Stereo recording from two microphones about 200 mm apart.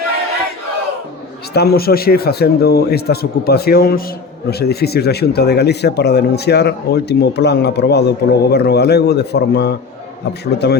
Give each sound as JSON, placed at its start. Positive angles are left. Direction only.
{"t": 1.5, "sound": "speech", "side_deg": 50}